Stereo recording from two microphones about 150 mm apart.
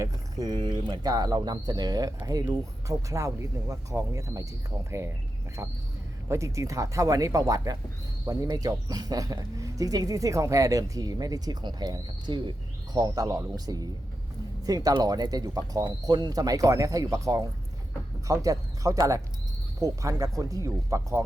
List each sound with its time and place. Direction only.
0.0 s speech: 25° right (ahead or behind)